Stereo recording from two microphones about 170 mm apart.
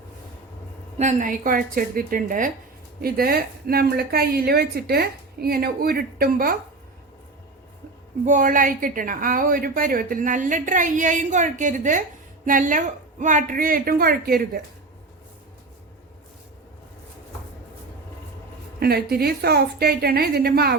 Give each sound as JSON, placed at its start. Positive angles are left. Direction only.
{"t": 0.9, "sound": "a woman's voice", "side_deg": -45}
{"t": 3.0, "sound": "a woman's voice", "side_deg": -65}
{"t": 8.2, "sound": "a woman's voice", "side_deg": -50}
{"t": 18.8, "sound": "a woman's voice", "side_deg": -65}